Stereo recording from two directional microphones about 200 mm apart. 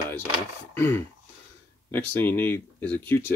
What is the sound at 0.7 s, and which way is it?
Speech, 10° left (ahead or behind).